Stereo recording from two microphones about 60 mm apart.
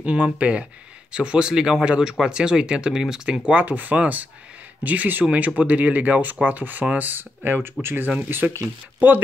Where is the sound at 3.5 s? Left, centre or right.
Right.